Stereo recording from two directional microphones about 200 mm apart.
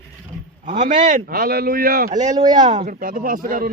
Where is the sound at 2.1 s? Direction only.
20° right (ahead or behind).